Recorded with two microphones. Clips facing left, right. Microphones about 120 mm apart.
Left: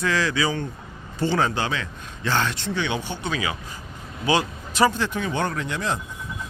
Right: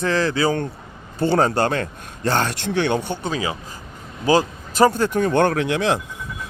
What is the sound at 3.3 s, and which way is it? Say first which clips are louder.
A man's voice: right 3 dB; 35° right (ahead or behind).